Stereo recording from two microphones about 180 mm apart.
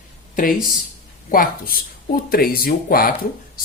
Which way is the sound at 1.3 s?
55° left (ahead or behind).